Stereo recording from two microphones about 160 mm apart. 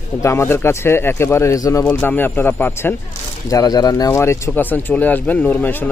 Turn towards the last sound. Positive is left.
turn(degrees=10)  # may be behind; listen again after turning